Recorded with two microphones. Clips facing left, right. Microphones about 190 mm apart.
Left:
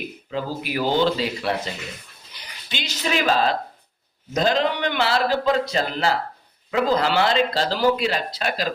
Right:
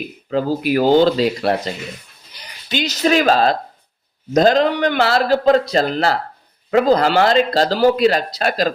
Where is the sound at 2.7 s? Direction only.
40° right (ahead or behind).